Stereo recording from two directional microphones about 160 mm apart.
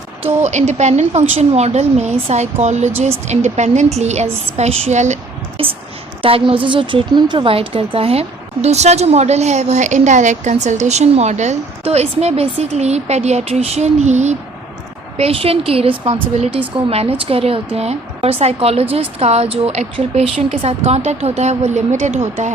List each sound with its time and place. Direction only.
0.2 s a woman's voice: 45° right (ahead or behind)
5.6 s a woman's voice: 35° right (ahead or behind)